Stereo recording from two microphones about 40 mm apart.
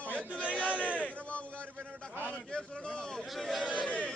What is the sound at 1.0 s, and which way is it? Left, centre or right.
Speech, left.